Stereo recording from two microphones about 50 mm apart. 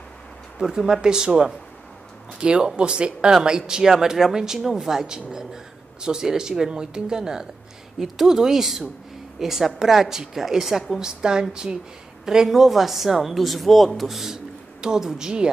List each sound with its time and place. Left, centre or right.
0.6 s a woman's voice: centre